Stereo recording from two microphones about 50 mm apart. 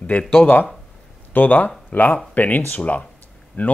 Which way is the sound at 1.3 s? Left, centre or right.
Left.